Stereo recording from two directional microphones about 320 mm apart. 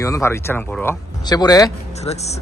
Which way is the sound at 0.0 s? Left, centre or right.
Centre.